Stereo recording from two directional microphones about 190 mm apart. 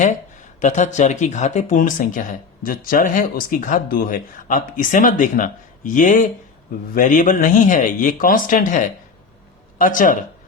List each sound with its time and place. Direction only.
0.6 s speech: 40° left (ahead or behind)